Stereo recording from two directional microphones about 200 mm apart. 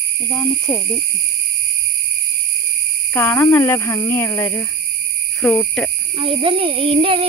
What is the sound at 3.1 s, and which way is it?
Speech, 10° left (ahead or behind).